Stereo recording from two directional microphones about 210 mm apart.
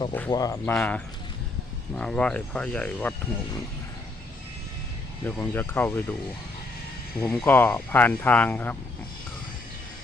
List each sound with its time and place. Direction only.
0.3 s speech: 15° left (ahead or behind)
5.2 s speech: 10° left (ahead or behind)
7.2 s speech: 10° left (ahead or behind)